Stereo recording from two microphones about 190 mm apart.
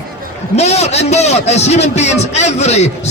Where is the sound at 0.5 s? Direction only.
35° left (ahead or behind).